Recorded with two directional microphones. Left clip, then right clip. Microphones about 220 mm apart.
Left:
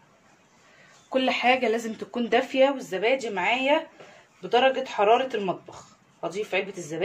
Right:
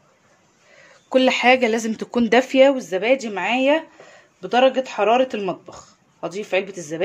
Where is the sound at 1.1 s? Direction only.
50° right (ahead or behind).